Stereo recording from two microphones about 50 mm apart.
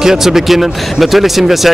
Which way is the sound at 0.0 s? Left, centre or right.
Centre.